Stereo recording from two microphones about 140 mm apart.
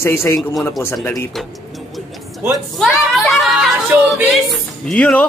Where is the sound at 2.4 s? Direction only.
15° right (ahead or behind).